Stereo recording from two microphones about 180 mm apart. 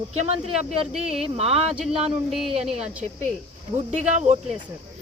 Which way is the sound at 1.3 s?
35° right (ahead or behind).